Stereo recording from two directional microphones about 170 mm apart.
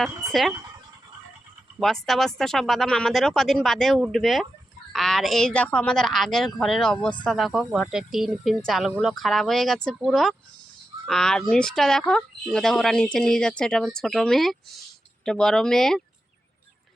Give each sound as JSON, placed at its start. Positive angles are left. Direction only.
{"t": 1.8, "sound": "a woman's voice", "side_deg": 0}